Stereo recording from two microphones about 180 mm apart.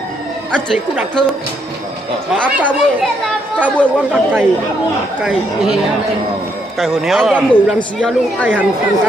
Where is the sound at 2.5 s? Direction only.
10° right (ahead or behind).